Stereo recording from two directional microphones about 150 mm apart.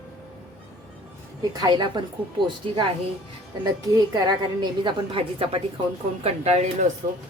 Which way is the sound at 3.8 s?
30° right (ahead or behind).